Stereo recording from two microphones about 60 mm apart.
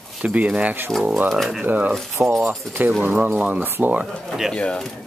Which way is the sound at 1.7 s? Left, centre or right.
Right.